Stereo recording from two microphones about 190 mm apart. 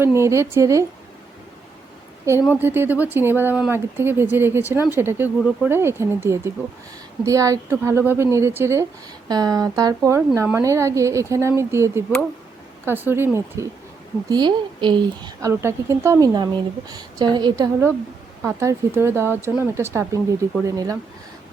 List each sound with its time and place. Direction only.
0.0 s speech: 15° right (ahead or behind)
2.4 s speech: 10° right (ahead or behind)
14.3 s a woman's voice: 25° right (ahead or behind)